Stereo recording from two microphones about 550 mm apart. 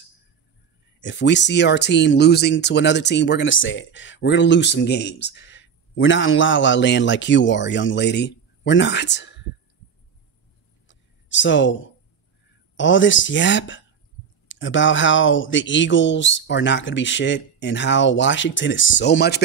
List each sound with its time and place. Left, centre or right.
1.0 s speech: centre
10.9 s a sound: centre
12.7 s speech: centre